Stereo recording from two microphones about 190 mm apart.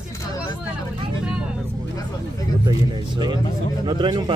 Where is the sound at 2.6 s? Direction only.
25° right (ahead or behind).